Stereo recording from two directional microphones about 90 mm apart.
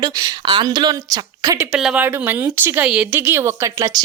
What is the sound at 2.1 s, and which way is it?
Speech, 20° right (ahead or behind).